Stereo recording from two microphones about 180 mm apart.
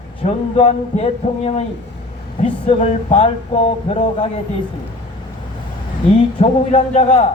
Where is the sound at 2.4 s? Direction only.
35° left (ahead or behind).